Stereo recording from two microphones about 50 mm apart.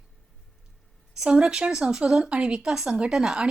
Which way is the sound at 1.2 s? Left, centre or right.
Centre.